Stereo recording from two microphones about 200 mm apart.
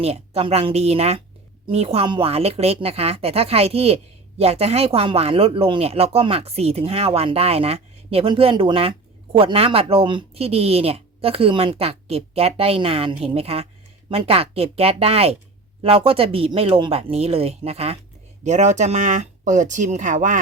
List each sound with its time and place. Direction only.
0.0 s speech: 30° right (ahead or behind)